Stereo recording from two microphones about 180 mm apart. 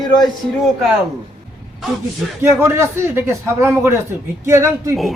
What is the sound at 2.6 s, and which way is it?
Speech, 15° right (ahead or behind).